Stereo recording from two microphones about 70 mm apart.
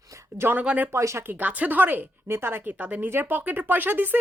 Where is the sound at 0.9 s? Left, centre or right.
Right.